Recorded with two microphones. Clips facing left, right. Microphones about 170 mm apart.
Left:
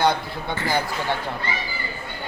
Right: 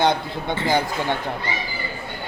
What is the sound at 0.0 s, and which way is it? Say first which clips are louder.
Speech: right 1 dB; 20° right (ahead or behind).